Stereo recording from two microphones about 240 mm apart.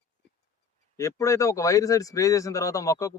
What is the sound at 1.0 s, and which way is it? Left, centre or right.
Speech, centre.